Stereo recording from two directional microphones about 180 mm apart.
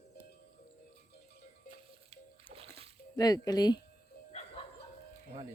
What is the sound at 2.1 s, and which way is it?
Water, 35° right (ahead or behind).